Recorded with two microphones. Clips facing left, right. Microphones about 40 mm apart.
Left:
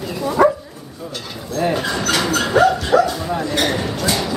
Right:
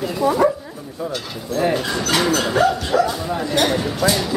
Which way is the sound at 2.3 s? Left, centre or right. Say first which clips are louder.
Left 3 dB; centre.